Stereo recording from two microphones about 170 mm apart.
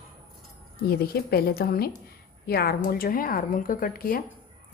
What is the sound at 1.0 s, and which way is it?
A woman's voice, 65° left (ahead or behind).